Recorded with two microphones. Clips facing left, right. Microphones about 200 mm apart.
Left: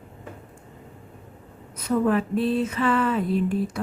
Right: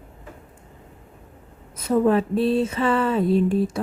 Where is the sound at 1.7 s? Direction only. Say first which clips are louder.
Right 3 dB; 25° right (ahead or behind).